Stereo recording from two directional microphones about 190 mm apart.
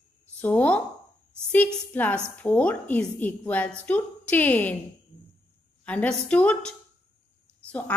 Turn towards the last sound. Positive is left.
turn(degrees=5)  # may be behind; listen again after turning